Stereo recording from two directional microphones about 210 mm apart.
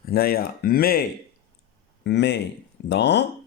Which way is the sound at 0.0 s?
45° left (ahead or behind).